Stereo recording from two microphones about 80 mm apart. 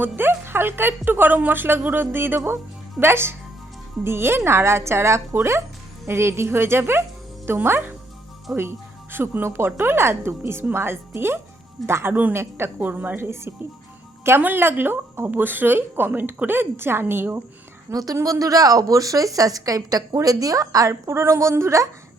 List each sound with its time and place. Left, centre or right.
0.0 s a woman's voice: right
8.5 s speech: centre
9.1 s a woman's voice: right
17.9 s a woman's voice: right
21.1 s a woman's voice: right